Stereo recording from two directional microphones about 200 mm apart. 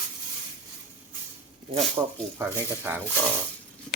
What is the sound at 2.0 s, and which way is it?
Speech, 15° right (ahead or behind).